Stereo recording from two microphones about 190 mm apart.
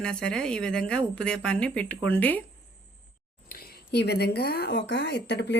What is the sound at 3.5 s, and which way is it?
Speech, 60° left (ahead or behind).